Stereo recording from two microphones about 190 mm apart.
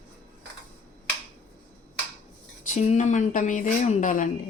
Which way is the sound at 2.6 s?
40° left (ahead or behind).